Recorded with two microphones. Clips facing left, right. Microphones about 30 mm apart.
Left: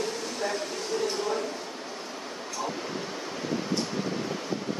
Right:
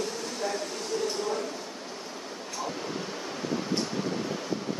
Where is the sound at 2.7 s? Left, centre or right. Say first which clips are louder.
Left 1 dB; centre.